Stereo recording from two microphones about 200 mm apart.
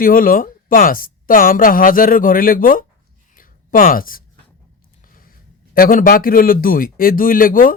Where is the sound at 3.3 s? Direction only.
45° left (ahead or behind).